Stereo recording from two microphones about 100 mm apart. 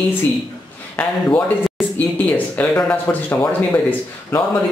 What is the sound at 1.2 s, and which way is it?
Speech, 15° left (ahead or behind).